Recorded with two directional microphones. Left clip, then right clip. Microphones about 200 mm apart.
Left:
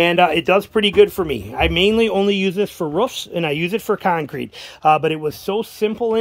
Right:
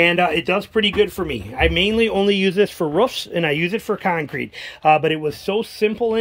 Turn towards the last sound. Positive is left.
turn(degrees=0)  # may be behind; listen again after turning